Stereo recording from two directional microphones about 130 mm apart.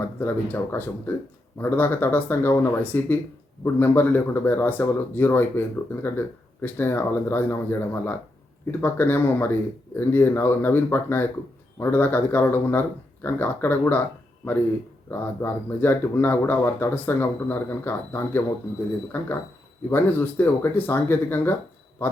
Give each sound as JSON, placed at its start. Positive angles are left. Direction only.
{"t": 0.2, "sound": "speech", "side_deg": 15}
{"t": 15.1, "sound": "speech", "side_deg": 15}